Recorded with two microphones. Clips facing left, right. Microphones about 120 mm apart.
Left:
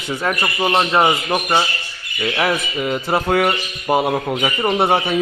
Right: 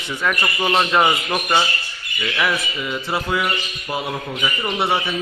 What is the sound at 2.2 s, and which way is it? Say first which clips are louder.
Speech: left 3 dB; 35° left (ahead or behind).